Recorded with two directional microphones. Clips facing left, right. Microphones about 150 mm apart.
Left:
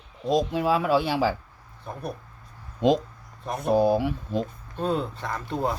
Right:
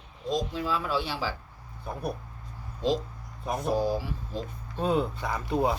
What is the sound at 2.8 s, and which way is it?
Speech, 70° left (ahead or behind).